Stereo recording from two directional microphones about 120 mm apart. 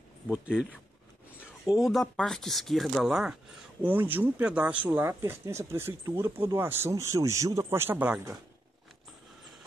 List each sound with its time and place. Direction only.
0.3 s speech: 5° right (ahead or behind)
1.9 s speech: 5° left (ahead or behind)
3.8 s speech: 15° right (ahead or behind)